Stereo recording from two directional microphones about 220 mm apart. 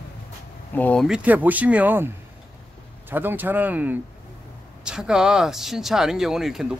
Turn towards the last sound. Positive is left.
turn(degrees=0)  # may be behind; listen again after turning